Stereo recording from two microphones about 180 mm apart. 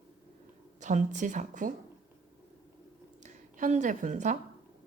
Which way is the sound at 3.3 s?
40° right (ahead or behind).